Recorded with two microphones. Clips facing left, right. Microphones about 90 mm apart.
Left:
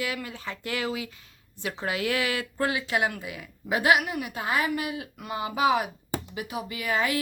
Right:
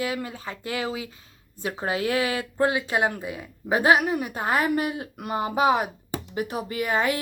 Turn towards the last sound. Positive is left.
turn(degrees=-35)  # may be behind; listen again after turning